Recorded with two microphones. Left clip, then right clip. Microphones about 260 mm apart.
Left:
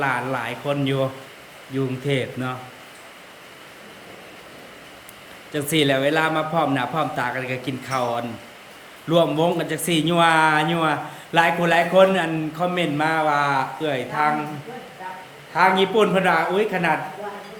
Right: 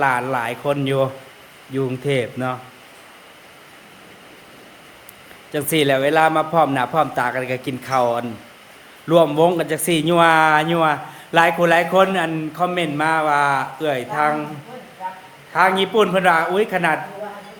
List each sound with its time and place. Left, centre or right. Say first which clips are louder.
0.0 s speech: right 4 dB; centre
5.5 s speech: right 2 dB; centre
15.5 s speech: right 1 dB; centre